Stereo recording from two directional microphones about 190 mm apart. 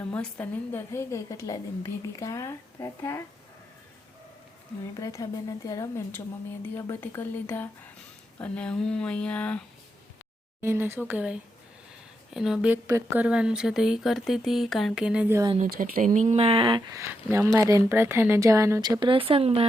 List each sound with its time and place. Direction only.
0.0 s a woman's voice: 10° left (ahead or behind)
4.9 s a woman's voice: 20° left (ahead or behind)
10.6 s speech: 15° right (ahead or behind)
15.8 s speech: 45° right (ahead or behind)